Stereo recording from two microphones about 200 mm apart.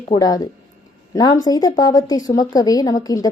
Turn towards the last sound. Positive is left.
turn(degrees=20)  # may be behind; listen again after turning